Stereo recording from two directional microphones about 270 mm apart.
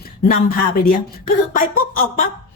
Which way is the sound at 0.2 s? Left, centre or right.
Left.